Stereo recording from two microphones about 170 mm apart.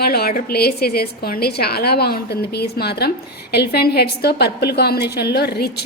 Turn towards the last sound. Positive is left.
turn(degrees=70)  # may be behind; listen again after turning